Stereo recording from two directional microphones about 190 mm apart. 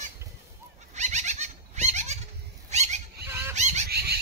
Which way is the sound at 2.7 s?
35° right (ahead or behind).